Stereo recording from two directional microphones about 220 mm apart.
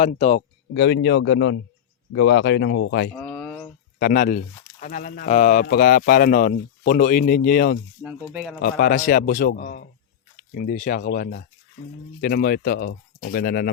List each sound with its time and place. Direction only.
0.0 s speech: 30° left (ahead or behind)
0.7 s speech: 55° left (ahead or behind)
3.2 s a sound: 5° left (ahead or behind)
4.0 s speech: 40° left (ahead or behind)
8.3 s speech: 5° right (ahead or behind)
8.8 s speech: 40° left (ahead or behind)